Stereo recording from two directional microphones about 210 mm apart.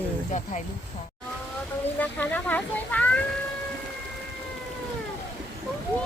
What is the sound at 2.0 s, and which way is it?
Speech, 5° left (ahead or behind).